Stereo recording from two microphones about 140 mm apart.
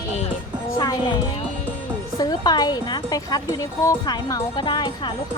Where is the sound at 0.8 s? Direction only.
30° left (ahead or behind).